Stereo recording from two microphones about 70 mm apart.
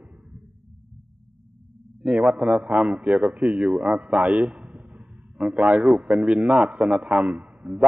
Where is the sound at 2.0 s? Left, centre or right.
Centre.